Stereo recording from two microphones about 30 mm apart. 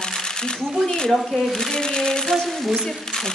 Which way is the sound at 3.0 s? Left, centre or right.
Centre.